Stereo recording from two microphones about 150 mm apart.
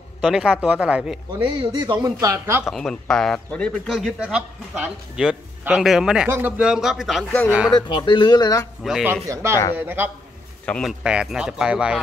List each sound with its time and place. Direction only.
0.2 s speech: 5° right (ahead or behind)
1.4 s speech: 30° right (ahead or behind)
2.6 s a man's voice: 5° left (ahead or behind)
6.2 s a man's voice: 15° right (ahead or behind)
7.7 s speech: 30° left (ahead or behind)
8.8 s a man's voice: 5° right (ahead or behind)
9.1 s speech: 20° right (ahead or behind)
10.6 s a man's voice: 10° left (ahead or behind)
10.9 s a man's voice: 5° right (ahead or behind)